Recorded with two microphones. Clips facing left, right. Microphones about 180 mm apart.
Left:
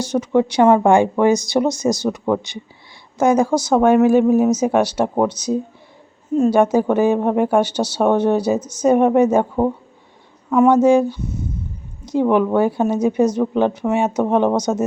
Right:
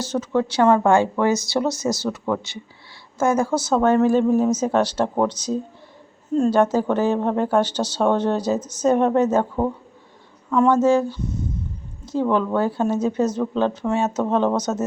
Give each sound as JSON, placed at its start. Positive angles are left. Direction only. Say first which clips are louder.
{"t": 0.0, "sound": "speech", "louder": "left 5 dB", "side_deg": 15}